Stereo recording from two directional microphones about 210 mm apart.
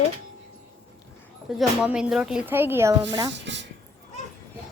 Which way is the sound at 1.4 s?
Centre (ahead or behind).